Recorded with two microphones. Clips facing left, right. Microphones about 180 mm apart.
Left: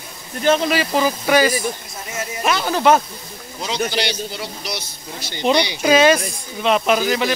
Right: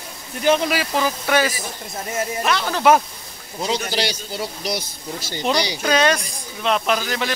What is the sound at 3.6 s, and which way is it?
Speech, 40° right (ahead or behind).